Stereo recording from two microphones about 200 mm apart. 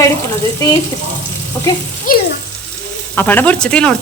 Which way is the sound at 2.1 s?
45° left (ahead or behind).